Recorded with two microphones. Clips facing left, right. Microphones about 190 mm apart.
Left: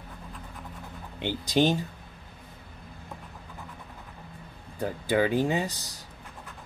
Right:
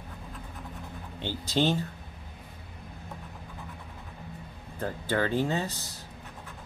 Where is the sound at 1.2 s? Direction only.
15° left (ahead or behind).